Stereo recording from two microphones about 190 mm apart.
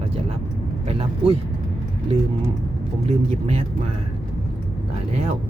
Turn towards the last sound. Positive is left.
turn(degrees=-35)  # may be behind; listen again after turning